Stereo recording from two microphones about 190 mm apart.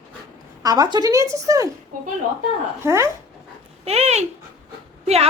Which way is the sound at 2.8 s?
15° right (ahead or behind).